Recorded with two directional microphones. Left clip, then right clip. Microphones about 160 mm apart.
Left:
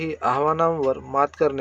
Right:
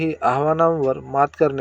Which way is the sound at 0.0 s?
10° right (ahead or behind).